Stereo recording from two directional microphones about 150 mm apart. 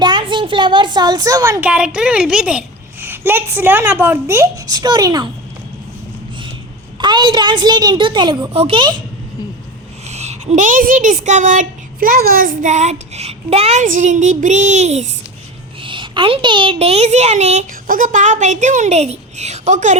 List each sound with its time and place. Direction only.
0.0 s a child's voice: 30° right (ahead or behind)
1.6 s a woman's voice: 10° right (ahead or behind); by 5.3 s 25° right (ahead or behind)
7.0 s a woman's voice: 30° right (ahead or behind)
10.1 s speech: 45° right (ahead or behind)
15.8 s a woman's voice: 35° right (ahead or behind)
17.8 s a woman's voice: 65° right (ahead or behind)